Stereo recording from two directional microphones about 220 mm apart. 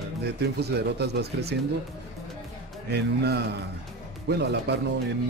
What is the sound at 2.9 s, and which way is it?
Speech, 50° right (ahead or behind).